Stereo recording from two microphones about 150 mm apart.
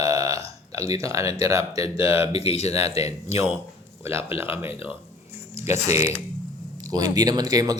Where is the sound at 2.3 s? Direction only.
45° left (ahead or behind).